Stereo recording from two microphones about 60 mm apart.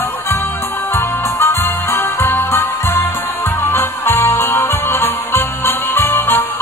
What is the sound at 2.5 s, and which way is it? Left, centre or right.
Music, left.